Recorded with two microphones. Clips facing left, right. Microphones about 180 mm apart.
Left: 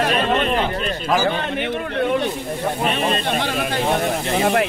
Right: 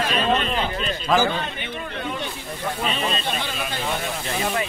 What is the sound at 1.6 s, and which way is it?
Speech, 65° left (ahead or behind).